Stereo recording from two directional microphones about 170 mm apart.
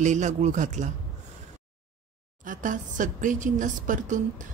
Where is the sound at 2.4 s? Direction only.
50° right (ahead or behind).